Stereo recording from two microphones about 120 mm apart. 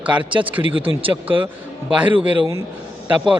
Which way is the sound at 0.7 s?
50° right (ahead or behind).